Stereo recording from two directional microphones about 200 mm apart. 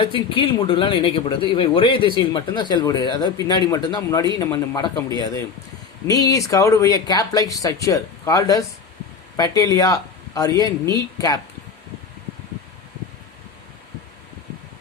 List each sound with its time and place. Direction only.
0.0 s speech: 25° left (ahead or behind)